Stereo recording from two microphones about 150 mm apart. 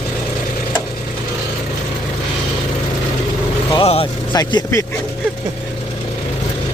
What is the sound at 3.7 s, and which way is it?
Vehicle, 40° left (ahead or behind).